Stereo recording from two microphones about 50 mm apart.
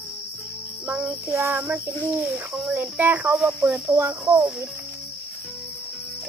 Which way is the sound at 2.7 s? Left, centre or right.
Right.